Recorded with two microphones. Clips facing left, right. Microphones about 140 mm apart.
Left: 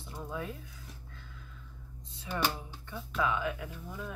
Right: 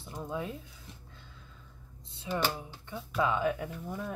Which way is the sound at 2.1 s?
25° right (ahead or behind).